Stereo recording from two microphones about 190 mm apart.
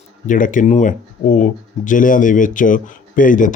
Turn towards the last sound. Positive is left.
turn(degrees=45)  # may be behind; listen again after turning